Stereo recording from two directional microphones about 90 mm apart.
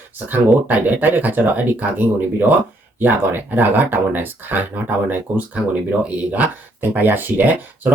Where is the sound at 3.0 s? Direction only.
20° right (ahead or behind).